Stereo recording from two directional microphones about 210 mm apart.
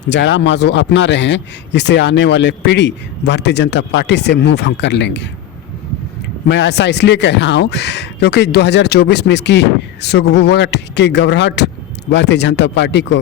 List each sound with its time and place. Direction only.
0.1 s speech: 60° left (ahead or behind)
6.5 s speech: 55° left (ahead or behind)